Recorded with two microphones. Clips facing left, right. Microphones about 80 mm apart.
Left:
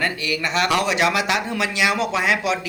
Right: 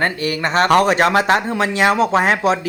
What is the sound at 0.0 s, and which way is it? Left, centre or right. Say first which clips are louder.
Speech: right 4 dB; right.